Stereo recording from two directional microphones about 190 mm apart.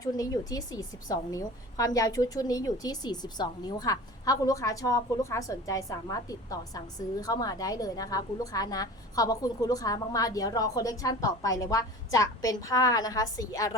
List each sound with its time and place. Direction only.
0.0 s a woman's voice: 20° left (ahead or behind)